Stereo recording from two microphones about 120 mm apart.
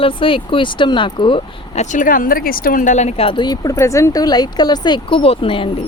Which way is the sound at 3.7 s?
25° left (ahead or behind).